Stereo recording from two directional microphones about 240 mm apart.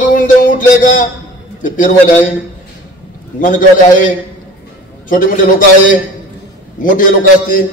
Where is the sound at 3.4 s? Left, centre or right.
Left.